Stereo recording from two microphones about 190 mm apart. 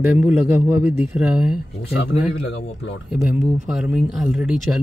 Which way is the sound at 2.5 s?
75° left (ahead or behind).